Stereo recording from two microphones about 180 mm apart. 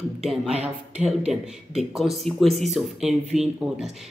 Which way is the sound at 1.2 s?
Centre (ahead or behind).